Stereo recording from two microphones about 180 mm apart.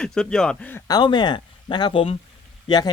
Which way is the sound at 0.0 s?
5° left (ahead or behind).